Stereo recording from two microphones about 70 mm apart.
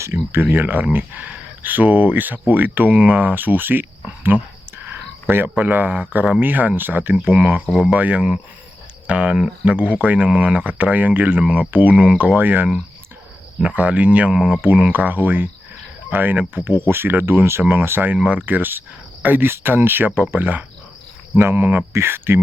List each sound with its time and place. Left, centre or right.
0.0 s speech: right; by 9.5 s centre
9.6 s speech: right
14.6 s speech: right
18.3 s speech: right